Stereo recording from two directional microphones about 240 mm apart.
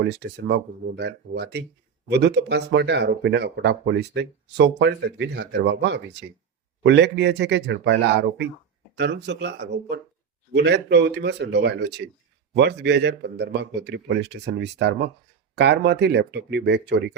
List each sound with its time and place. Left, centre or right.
0.4 s speech: right